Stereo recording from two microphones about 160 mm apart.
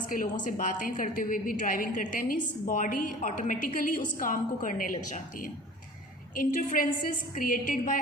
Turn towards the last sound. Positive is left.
turn(degrees=60)  # may be behind; listen again after turning